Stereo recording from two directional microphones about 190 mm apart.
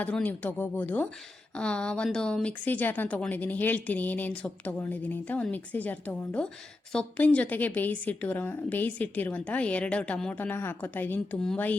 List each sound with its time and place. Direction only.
0.0 s speech: 10° left (ahead or behind)